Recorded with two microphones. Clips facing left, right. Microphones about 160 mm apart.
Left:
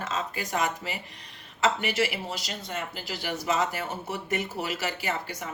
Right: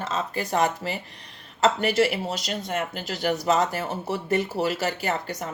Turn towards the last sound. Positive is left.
turn(degrees=-40)  # may be behind; listen again after turning